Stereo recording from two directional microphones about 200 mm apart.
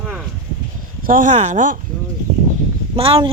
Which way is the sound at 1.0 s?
40° right (ahead or behind).